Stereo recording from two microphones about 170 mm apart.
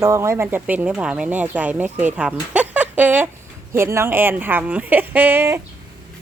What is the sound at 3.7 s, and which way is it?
A woman's voice, 15° right (ahead or behind).